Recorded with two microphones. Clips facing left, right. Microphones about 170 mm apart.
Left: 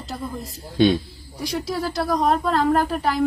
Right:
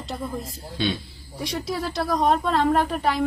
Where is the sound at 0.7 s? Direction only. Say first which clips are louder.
Left 9 dB; 45° left (ahead or behind).